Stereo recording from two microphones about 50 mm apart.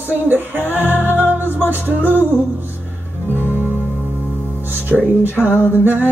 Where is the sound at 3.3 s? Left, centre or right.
Right.